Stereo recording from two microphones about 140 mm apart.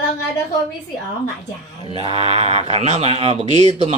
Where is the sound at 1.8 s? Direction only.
45° right (ahead or behind).